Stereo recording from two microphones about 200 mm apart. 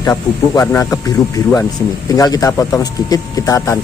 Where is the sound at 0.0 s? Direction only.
20° left (ahead or behind).